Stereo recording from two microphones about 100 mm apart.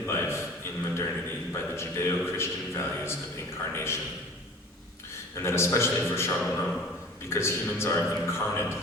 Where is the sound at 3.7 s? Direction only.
25° left (ahead or behind).